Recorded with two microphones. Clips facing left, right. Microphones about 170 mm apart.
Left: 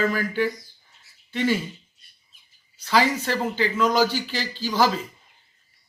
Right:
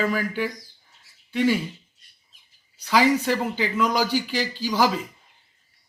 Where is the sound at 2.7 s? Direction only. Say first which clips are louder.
Right 2 dB; 15° right (ahead or behind).